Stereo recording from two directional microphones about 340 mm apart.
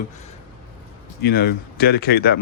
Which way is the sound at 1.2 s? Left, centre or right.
Left.